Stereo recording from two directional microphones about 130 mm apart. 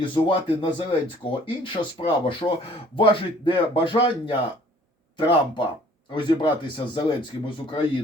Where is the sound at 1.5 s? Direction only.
40° left (ahead or behind).